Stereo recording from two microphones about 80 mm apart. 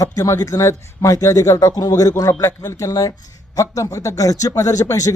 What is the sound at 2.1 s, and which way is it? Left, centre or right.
Speech, left.